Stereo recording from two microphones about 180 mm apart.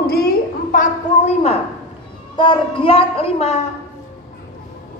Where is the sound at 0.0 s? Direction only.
55° left (ahead or behind); by 1.6 s 35° left (ahead or behind).